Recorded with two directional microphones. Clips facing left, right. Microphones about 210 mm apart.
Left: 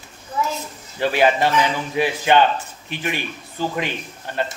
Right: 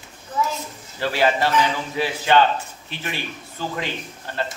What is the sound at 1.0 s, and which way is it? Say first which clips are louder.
A man's voice: left 3 dB; 20° left (ahead or behind).